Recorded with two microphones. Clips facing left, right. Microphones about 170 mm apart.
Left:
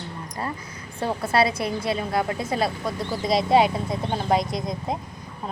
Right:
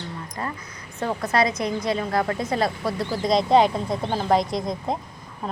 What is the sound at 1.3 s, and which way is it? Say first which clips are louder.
A woman's voice: even; 30° left (ahead or behind).